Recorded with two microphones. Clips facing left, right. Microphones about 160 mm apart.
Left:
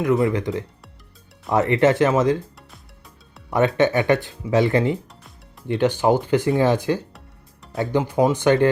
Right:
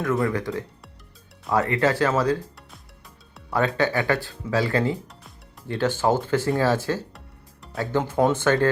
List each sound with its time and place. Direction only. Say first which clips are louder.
0.0 s speech: left 4 dB; 20° left (ahead or behind)
3.5 s speech: left 4 dB; 20° left (ahead or behind)